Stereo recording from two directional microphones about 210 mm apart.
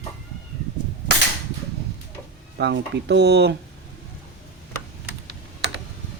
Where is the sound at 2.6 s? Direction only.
55° right (ahead or behind).